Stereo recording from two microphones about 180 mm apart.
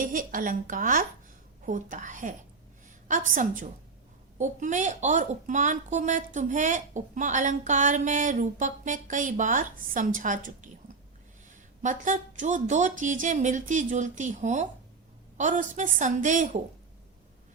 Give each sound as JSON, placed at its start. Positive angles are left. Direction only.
{"t": 0.0, "sound": "speech", "side_deg": -50}
{"t": 11.8, "sound": "speech", "side_deg": -45}